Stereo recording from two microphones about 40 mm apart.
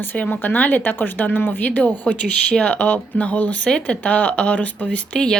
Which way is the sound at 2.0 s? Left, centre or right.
Left.